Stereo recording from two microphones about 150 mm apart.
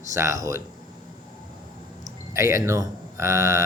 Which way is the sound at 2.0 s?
20° right (ahead or behind).